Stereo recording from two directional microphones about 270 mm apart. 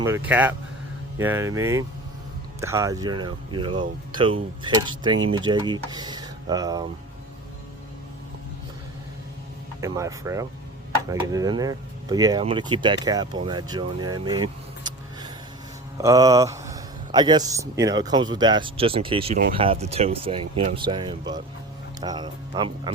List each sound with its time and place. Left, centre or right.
0.0 s a man's voice: centre
9.8 s a man's voice: centre